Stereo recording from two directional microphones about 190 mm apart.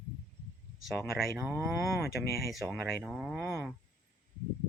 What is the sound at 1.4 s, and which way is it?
Speech, 10° right (ahead or behind).